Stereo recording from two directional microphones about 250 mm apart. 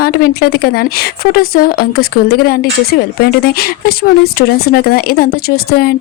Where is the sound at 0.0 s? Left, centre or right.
Left.